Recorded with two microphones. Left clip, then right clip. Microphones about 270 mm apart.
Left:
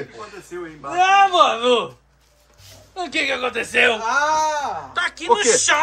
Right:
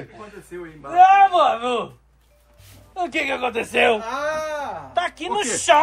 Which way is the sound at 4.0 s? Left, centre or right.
Centre.